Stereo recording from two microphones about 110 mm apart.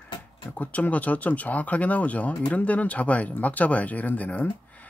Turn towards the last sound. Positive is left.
turn(degrees=15)  # may be behind; listen again after turning